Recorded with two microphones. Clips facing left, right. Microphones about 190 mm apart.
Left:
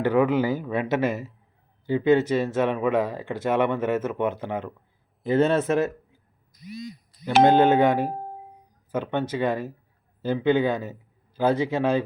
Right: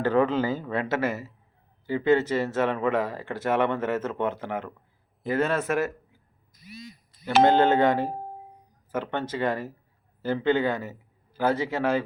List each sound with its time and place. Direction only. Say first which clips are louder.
0.0 s speech: left 2 dB; 10° left (ahead or behind)